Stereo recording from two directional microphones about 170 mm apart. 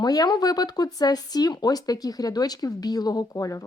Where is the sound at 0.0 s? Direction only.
25° left (ahead or behind).